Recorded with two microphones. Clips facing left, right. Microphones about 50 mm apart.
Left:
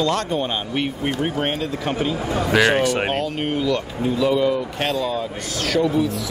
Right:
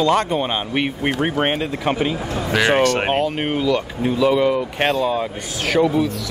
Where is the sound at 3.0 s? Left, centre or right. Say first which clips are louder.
Right 3 dB; right.